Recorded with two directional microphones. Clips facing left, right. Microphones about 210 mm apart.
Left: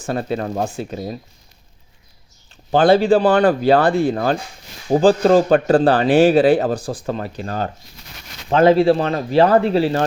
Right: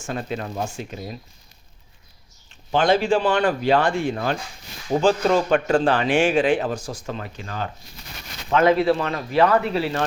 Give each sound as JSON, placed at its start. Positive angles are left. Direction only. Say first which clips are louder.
{"t": 0.0, "sound": "speech", "louder": "left 6 dB", "side_deg": 35}
{"t": 0.8, "sound": "speech", "louder": "left 6 dB", "side_deg": 35}
{"t": 2.7, "sound": "speech", "louder": "left 6 dB", "side_deg": 35}